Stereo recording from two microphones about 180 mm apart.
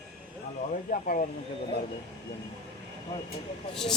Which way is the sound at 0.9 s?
45° left (ahead or behind).